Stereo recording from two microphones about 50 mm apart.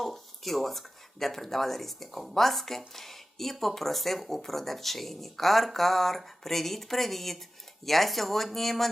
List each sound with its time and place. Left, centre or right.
0.0 s speech: centre